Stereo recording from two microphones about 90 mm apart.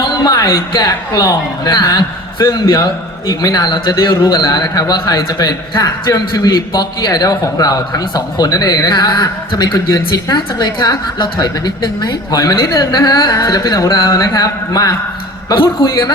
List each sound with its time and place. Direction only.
0.0 s music: 50° left (ahead or behind)
0.7 s a man's voice: 50° left (ahead or behind)
9.7 s speech: 40° left (ahead or behind)
10.3 s a man's voice: 55° left (ahead or behind)
13.7 s a man's voice: 40° left (ahead or behind)
15.5 s a man's voice: 60° left (ahead or behind)